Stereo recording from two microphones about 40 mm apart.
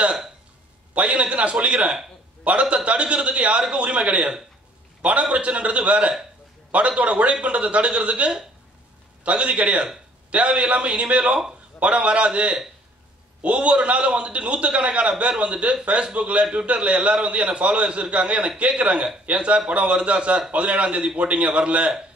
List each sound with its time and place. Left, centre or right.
0.9 s a man's voice: right
5.3 s a man's voice: right